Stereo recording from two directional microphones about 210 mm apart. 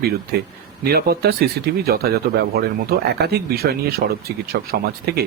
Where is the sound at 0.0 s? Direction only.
50° right (ahead or behind).